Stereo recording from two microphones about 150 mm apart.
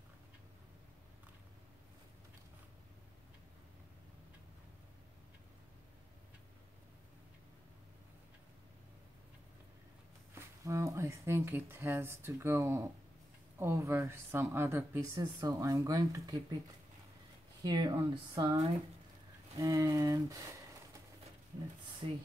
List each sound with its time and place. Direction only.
10.6 s a woman's voice: 20° right (ahead or behind)
17.6 s a woman's voice: 30° right (ahead or behind)